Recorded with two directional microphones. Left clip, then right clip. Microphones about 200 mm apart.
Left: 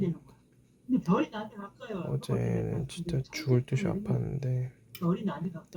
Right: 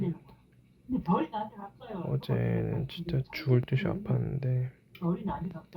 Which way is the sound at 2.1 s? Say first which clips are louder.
Right 1 dB; 5° left (ahead or behind).